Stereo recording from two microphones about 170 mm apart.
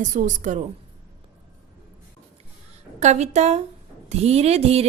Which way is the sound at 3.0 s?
40° right (ahead or behind).